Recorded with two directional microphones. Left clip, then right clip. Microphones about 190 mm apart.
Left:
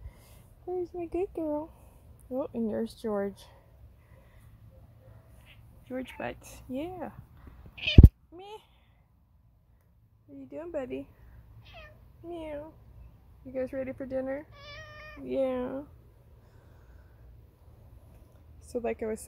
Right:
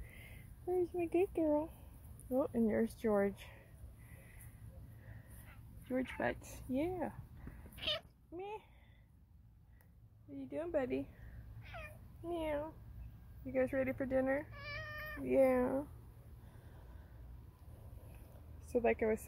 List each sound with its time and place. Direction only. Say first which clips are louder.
0.9 s speech: left 2 dB; 15° left (ahead or behind)
5.9 s speech: left 1 dB; 5° left (ahead or behind)
7.8 s cat: left 13 dB; 20° left (ahead or behind)
10.3 s speech: left 2 dB; 10° left (ahead or behind)
12.3 s speech: even; 5° left (ahead or behind)
18.7 s speech: left 1 dB; 10° left (ahead or behind)